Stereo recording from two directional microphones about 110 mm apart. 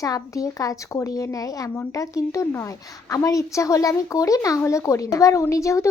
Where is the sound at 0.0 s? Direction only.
30° left (ahead or behind).